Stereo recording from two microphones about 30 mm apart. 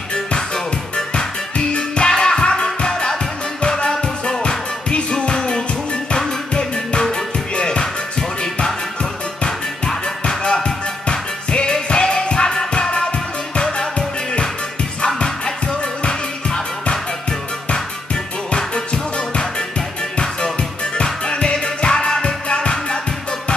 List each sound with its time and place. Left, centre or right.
0.9 s music: left
10.2 s music: left
16.1 s music: left
21.0 s music: left